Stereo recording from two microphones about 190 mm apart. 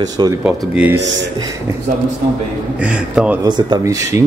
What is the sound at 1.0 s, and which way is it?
Speech, 70° right (ahead or behind).